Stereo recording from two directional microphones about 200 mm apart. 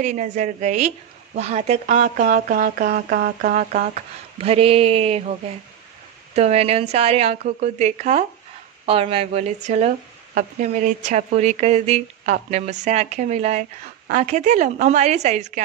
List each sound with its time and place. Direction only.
0.0 s speech: 35° right (ahead or behind)
4.4 s speech: 30° right (ahead or behind)
6.3 s speech: 30° right (ahead or behind)